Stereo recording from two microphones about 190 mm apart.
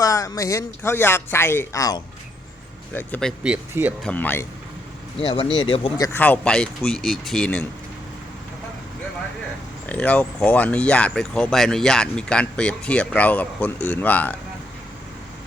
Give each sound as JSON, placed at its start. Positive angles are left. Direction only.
{"t": 0.0, "sound": "speech", "side_deg": 15}
{"t": 3.5, "sound": "speech", "side_deg": -10}
{"t": 4.0, "sound": "speech", "side_deg": 10}
{"t": 5.2, "sound": "speech", "side_deg": 20}
{"t": 6.0, "sound": "speech", "side_deg": 10}
{"t": 9.8, "sound": "speech", "side_deg": 10}